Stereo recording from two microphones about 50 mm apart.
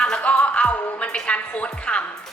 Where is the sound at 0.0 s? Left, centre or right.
Left.